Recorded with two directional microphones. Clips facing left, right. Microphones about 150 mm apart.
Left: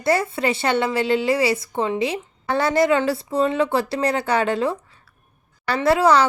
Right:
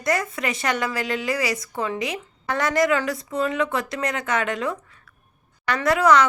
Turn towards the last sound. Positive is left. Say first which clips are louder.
# left 2 dB
turn(degrees=30)  # may be behind; listen again after turning